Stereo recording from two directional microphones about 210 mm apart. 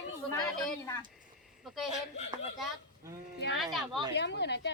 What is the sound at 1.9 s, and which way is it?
Speech, 30° left (ahead or behind).